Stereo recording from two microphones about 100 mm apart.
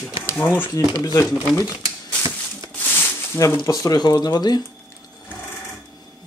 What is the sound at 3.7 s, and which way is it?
Speech, 40° left (ahead or behind).